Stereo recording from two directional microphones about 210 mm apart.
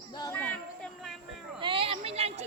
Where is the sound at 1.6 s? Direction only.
25° right (ahead or behind).